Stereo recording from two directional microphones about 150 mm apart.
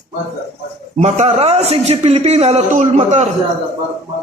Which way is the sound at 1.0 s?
45° right (ahead or behind).